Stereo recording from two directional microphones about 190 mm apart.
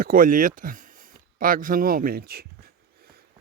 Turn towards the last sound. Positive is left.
turn(degrees=-55)  # may be behind; listen again after turning